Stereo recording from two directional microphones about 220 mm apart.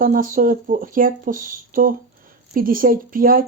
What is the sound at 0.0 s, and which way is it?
Speech, 40° right (ahead or behind).